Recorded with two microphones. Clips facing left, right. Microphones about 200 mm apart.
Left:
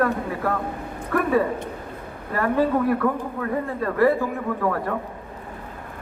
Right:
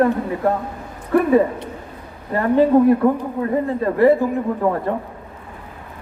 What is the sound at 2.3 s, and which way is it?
Speech, 25° right (ahead or behind).